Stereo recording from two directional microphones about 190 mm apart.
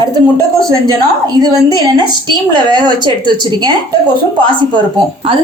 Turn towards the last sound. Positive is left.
turn(degrees=-25)  # may be behind; listen again after turning